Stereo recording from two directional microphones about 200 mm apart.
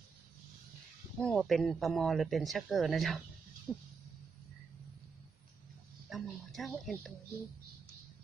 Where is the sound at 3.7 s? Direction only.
Centre (ahead or behind).